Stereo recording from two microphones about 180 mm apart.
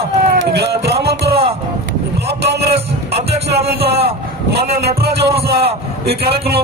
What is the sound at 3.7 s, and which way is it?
Speech, 65° right (ahead or behind).